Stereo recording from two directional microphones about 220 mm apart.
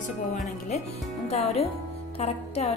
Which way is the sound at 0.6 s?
30° left (ahead or behind).